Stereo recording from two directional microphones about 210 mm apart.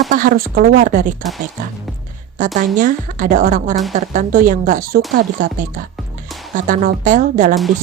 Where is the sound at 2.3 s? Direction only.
35° right (ahead or behind).